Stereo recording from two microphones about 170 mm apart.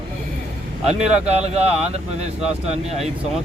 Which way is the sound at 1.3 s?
40° right (ahead or behind).